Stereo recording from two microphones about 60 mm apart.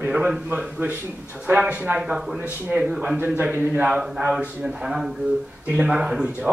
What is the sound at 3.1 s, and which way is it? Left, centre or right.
Speech, right.